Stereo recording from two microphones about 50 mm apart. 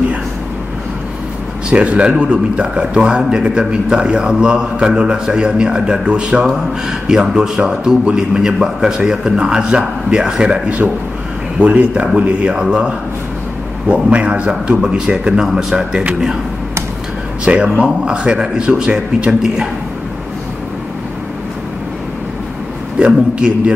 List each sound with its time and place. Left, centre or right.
1.7 s a man's voice: right
12.5 s a man's voice: centre
17.5 s a man's voice: right
22.9 s a man's voice: right